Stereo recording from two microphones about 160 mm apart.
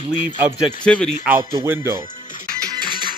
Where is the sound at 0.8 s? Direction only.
5° left (ahead or behind).